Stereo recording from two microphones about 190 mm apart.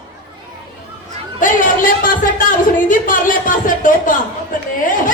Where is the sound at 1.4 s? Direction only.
45° left (ahead or behind).